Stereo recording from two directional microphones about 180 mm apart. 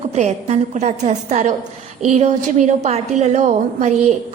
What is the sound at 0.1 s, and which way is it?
A woman's voice, 35° right (ahead or behind).